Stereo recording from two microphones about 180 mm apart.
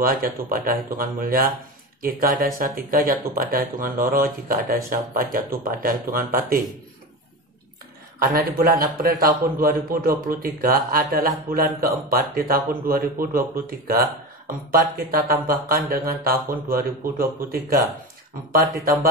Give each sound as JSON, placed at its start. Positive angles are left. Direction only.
{"t": 0.0, "sound": "a man's voice", "side_deg": -55}
{"t": 8.2, "sound": "a man's voice", "side_deg": -55}